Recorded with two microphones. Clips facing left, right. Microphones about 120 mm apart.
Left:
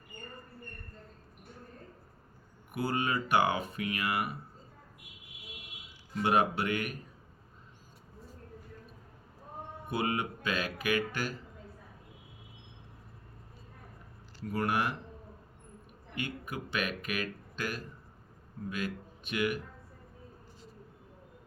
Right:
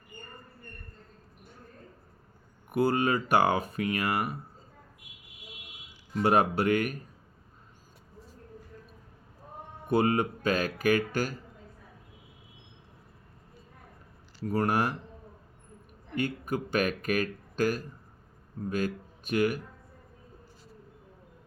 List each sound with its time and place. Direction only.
2.7 s speech: 40° right (ahead or behind)
6.2 s speech: 40° right (ahead or behind)
9.9 s speech: 40° right (ahead or behind)
14.4 s speech: 40° right (ahead or behind)
16.1 s speech: 40° right (ahead or behind)